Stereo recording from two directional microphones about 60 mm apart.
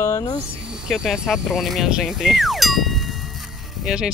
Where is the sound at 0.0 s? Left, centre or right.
Left.